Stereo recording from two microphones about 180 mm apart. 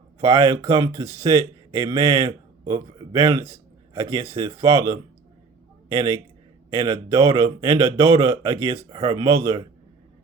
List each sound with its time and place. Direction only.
0.2 s speech: 15° right (ahead or behind)